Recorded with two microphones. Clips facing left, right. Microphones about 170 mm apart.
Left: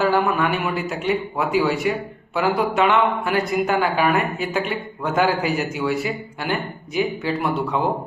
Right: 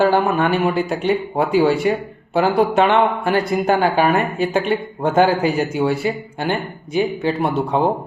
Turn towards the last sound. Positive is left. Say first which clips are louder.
# right 4 dB
turn(degrees=-25)  # may be behind; listen again after turning